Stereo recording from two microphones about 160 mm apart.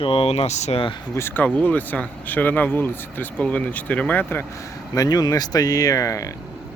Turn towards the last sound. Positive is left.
turn(degrees=20)  # may be behind; listen again after turning